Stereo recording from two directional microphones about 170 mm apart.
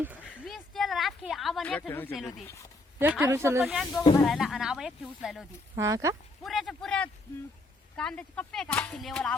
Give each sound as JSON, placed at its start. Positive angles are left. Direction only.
{"t": 0.3, "sound": "a sound", "side_deg": 0}
{"t": 3.0, "sound": "speech", "side_deg": -10}
{"t": 3.7, "sound": "speech", "side_deg": 0}
{"t": 5.7, "sound": "speech", "side_deg": -15}
{"t": 6.4, "sound": "a man's voice", "side_deg": 0}